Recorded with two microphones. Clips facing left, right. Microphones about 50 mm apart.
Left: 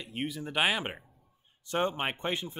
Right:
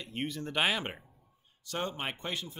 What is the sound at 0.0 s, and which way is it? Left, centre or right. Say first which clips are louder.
Speech: left 1 dB; centre.